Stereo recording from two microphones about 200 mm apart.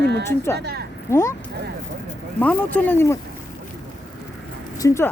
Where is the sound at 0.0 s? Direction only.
60° right (ahead or behind).